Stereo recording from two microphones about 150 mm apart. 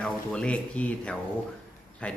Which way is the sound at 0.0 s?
5° left (ahead or behind).